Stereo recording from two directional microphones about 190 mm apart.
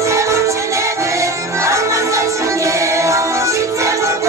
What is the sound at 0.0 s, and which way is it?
Music, 15° right (ahead or behind).